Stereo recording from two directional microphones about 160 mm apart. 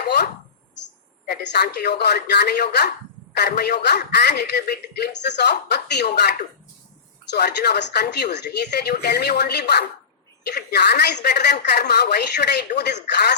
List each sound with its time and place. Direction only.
1.3 s speech: 85° left